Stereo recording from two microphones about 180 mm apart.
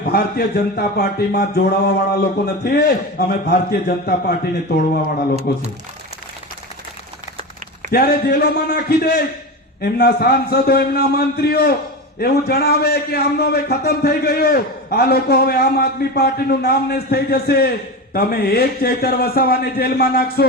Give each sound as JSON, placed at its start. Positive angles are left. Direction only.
{"t": 0.0, "sound": "a man's voice", "side_deg": 60}
{"t": 7.9, "sound": "a man's voice", "side_deg": 60}